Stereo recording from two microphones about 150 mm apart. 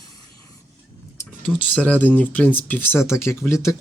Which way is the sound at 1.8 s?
10° left (ahead or behind).